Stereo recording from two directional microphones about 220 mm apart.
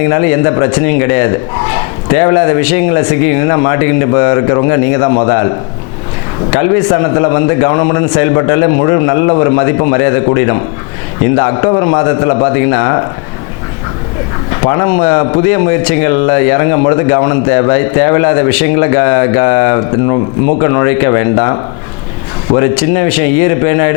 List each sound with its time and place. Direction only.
0.1 s speech: 20° left (ahead or behind)
6.5 s speech: 20° left (ahead or behind)
14.6 s speech: 20° left (ahead or behind)
22.7 s speech: 10° left (ahead or behind)